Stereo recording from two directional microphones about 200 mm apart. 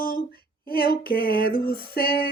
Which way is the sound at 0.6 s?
50° left (ahead or behind).